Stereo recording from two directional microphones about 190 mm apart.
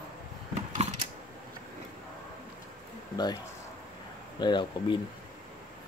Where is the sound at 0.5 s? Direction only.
35° right (ahead or behind).